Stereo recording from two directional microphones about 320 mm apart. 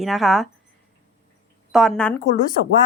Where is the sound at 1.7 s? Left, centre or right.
Centre.